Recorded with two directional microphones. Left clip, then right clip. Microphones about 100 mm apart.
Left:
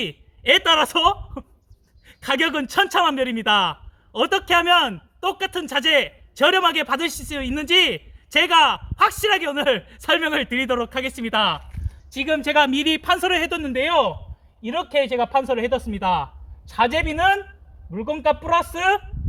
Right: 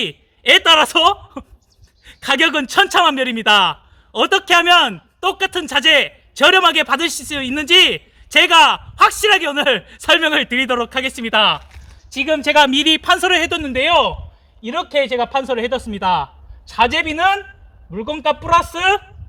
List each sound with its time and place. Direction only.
0.0 s a man's voice: 40° right (ahead or behind)
14.6 s speech: 5° right (ahead or behind)
17.9 s speech: 15° right (ahead or behind)